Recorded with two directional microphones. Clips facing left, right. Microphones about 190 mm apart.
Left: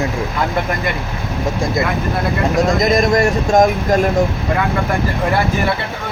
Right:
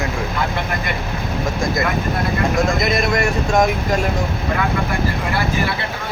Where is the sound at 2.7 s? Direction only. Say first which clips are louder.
Left 5 dB; 40° left (ahead or behind).